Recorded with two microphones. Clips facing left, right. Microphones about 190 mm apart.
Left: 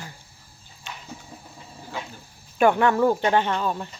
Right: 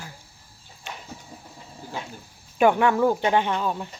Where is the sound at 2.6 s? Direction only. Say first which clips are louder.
Even; 10° right (ahead or behind).